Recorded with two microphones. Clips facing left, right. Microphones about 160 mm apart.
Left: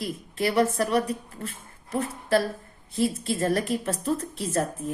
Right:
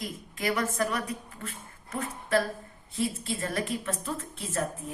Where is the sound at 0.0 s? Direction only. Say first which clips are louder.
Left 5 dB; 35° left (ahead or behind).